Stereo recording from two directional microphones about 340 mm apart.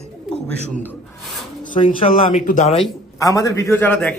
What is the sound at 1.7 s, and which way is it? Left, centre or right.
Speech, centre.